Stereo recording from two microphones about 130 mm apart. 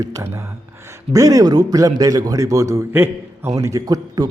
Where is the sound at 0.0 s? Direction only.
25° right (ahead or behind).